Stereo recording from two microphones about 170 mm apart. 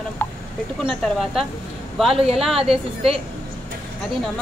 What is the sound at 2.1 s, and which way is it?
A woman's voice, 35° right (ahead or behind).